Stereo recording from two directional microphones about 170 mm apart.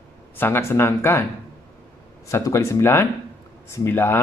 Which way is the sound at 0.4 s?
15° left (ahead or behind).